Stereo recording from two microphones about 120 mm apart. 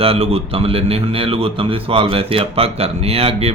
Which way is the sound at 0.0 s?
55° right (ahead or behind).